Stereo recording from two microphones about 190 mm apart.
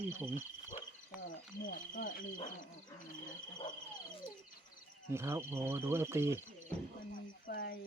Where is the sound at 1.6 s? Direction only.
45° left (ahead or behind).